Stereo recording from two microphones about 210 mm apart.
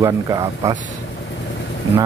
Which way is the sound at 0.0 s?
15° right (ahead or behind).